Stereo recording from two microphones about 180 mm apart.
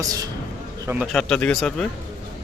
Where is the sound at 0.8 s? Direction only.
10° right (ahead or behind).